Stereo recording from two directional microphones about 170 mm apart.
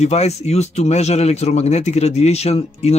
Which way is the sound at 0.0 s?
40° left (ahead or behind).